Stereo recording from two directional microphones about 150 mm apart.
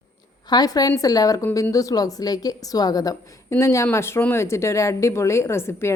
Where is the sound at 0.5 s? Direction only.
25° left (ahead or behind).